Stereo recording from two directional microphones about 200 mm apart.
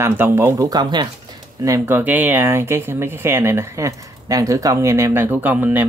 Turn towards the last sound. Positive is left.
turn(degrees=-10)  # may be behind; listen again after turning